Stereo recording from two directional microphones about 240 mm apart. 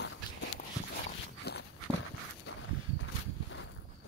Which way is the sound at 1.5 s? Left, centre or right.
Left.